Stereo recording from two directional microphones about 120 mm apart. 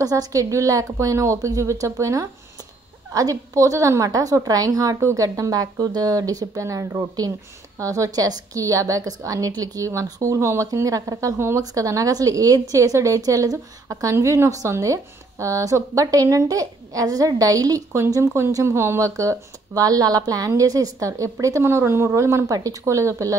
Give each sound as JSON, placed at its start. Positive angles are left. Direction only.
{"t": 0.0, "sound": "speech", "side_deg": -30}